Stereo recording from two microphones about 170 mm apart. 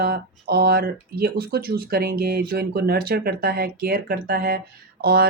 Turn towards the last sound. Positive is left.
turn(degrees=-65)  # may be behind; listen again after turning